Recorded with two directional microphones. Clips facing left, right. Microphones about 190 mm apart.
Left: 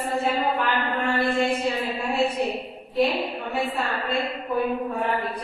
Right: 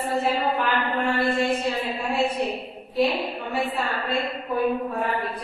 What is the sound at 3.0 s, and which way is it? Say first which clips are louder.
Speech: even; centre (ahead or behind).